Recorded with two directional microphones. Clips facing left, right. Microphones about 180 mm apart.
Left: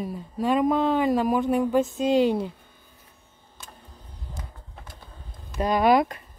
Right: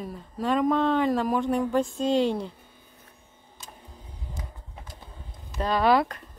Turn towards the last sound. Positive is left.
turn(degrees=15)  # may be behind; listen again after turning